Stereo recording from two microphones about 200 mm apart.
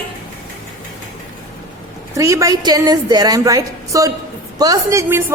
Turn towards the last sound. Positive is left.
turn(degrees=-15)  # may be behind; listen again after turning